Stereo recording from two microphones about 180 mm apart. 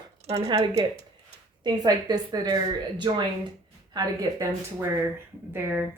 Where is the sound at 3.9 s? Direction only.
20° right (ahead or behind).